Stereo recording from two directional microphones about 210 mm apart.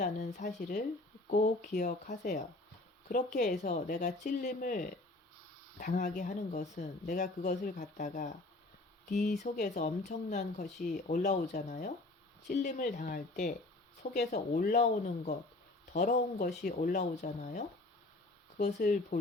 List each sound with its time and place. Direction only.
0.0 s speech: 35° left (ahead or behind)